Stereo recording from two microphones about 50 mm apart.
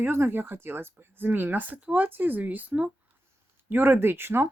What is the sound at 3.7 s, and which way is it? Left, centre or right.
Speech, right.